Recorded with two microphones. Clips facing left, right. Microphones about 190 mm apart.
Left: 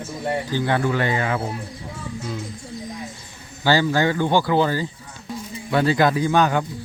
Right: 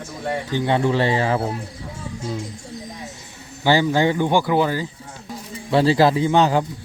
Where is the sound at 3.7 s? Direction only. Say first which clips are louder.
Right 1 dB; 20° right (ahead or behind).